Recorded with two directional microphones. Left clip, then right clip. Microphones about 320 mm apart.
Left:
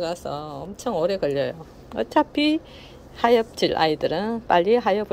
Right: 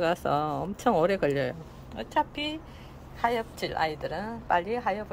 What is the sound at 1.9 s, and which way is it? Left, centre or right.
Speech, centre.